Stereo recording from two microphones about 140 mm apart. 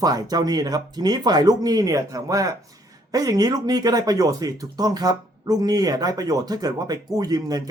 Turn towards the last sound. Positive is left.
turn(degrees=-25)  # may be behind; listen again after turning